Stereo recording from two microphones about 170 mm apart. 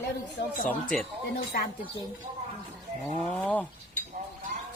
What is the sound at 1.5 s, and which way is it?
Speech, 55° left (ahead or behind).